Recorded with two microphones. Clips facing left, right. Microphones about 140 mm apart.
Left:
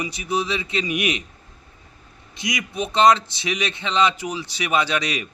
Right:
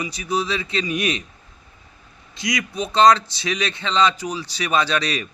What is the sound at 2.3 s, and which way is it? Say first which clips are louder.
A man's voice: right 2 dB; 25° left (ahead or behind).